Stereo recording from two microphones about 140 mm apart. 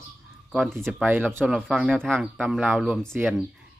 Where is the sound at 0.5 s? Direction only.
Centre (ahead or behind).